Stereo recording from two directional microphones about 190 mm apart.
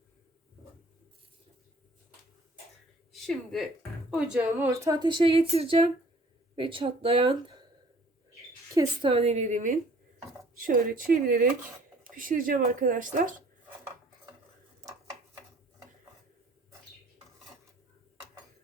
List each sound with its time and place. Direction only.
3.1 s a woman's voice: centre (ahead or behind); by 7.6 s 25° right (ahead or behind)
8.7 s a woman's voice: 20° right (ahead or behind); by 13.3 s 45° right (ahead or behind)